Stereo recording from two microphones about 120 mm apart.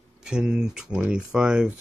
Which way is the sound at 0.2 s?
5° right (ahead or behind).